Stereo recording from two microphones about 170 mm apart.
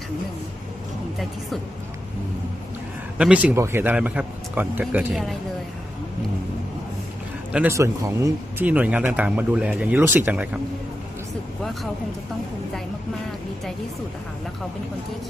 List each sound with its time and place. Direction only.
3.2 s a man's voice: 5° right (ahead or behind)
7.5 s a man's voice: 15° right (ahead or behind)
11.6 s speech: centre (ahead or behind)